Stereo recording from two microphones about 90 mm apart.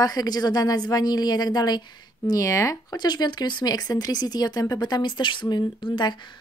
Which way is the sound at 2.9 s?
50° left (ahead or behind).